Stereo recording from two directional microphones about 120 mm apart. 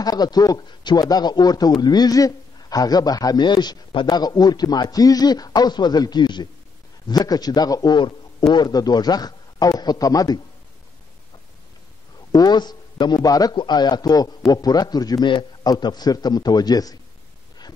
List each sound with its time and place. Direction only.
0.0 s speech: 35° left (ahead or behind)
12.3 s speech: 35° left (ahead or behind)